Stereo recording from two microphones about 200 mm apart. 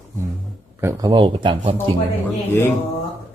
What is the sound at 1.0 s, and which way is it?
Speech, 25° right (ahead or behind).